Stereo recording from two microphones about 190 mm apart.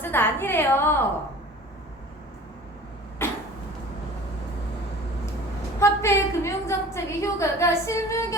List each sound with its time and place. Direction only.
0.0 s a woman's voice: 10° left (ahead or behind)
3.2 s a sound: 15° left (ahead or behind)
5.8 s a woman's voice: 15° left (ahead or behind)